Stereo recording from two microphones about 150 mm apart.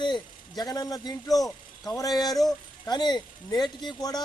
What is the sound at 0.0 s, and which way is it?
A man's voice, 30° left (ahead or behind).